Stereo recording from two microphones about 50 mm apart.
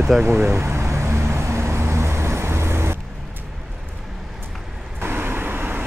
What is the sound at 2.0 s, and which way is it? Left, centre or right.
Vehicle, right.